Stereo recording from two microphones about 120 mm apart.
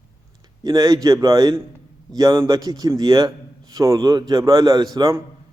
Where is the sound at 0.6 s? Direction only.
35° right (ahead or behind).